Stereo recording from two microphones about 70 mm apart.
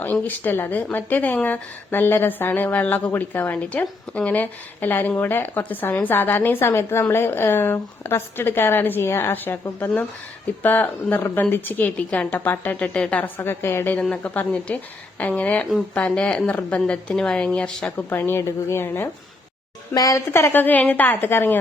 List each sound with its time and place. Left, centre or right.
0.0 s a woman's voice: left
14.1 s a woman's voice: left
17.9 s a woman's voice: left
19.9 s a woman's voice: left
20.5 s a woman's voice: left